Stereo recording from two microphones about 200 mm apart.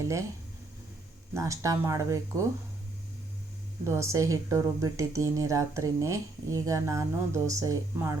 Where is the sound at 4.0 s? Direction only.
15° right (ahead or behind).